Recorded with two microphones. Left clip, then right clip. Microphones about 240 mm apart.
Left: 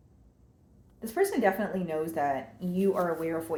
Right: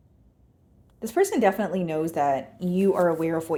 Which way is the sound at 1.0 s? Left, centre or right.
Right.